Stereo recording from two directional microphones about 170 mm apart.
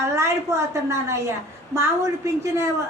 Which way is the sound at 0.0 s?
15° right (ahead or behind).